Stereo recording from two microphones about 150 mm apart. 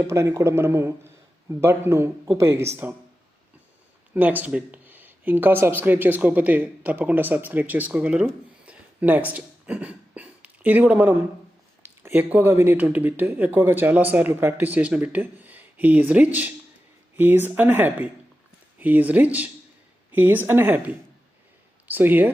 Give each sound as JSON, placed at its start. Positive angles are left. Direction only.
{"t": 0.0, "sound": "a man's voice", "side_deg": -20}
{"t": 4.1, "sound": "speech", "side_deg": -10}
{"t": 9.3, "sound": "a sound", "side_deg": -10}
{"t": 11.8, "sound": "speech", "side_deg": -15}